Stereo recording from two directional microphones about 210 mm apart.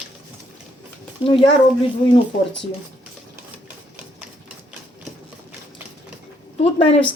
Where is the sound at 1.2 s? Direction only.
25° left (ahead or behind).